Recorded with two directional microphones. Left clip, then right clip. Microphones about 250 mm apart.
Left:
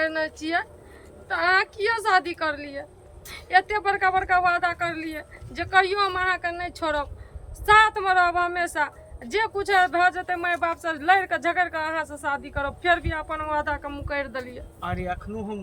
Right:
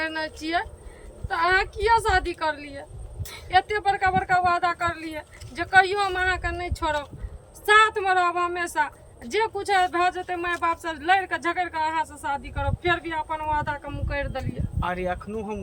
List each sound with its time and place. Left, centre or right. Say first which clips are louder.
0.0 s speech: left 3 dB; centre
14.8 s speech: right 3 dB; centre